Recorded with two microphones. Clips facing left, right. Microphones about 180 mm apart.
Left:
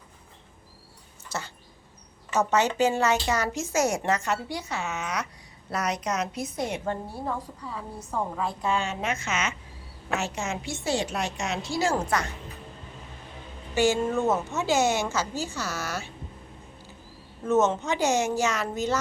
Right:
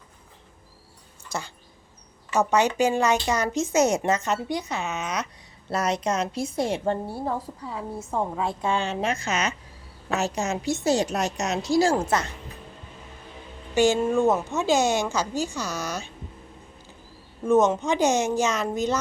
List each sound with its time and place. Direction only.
1.3 s a woman's voice: 15° right (ahead or behind); by 11.9 s 35° right (ahead or behind)
12.0 s a woman's voice: 25° right (ahead or behind)
13.7 s a woman's voice: 15° right (ahead or behind)
17.4 s a woman's voice: 15° right (ahead or behind)